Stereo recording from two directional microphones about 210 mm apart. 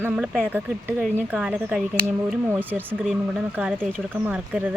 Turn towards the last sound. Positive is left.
turn(degrees=-5)  # may be behind; listen again after turning